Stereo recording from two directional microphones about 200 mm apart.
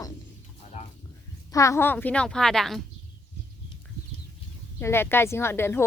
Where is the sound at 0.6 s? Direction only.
35° left (ahead or behind).